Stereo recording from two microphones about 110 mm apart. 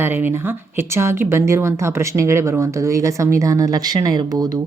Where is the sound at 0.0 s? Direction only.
20° right (ahead or behind).